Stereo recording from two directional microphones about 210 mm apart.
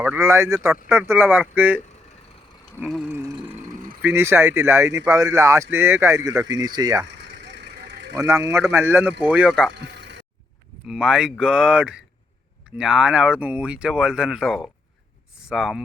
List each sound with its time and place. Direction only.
0.0 s speech: 10° right (ahead or behind)
2.7 s speech: 5° left (ahead or behind)
3.1 s speech: 15° right (ahead or behind)
7.1 s vehicle: 55° right (ahead or behind)
8.1 s speech: 15° right (ahead or behind); by 9.7 s centre (ahead or behind)
9.7 s a sound: 55° right (ahead or behind)
10.8 s speech: 5° right (ahead or behind)